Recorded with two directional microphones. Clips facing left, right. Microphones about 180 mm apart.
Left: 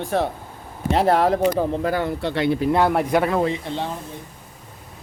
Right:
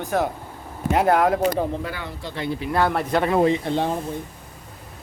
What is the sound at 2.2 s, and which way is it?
Speech, 70° left (ahead or behind).